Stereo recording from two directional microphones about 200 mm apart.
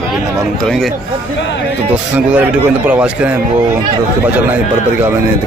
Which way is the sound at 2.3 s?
5° right (ahead or behind).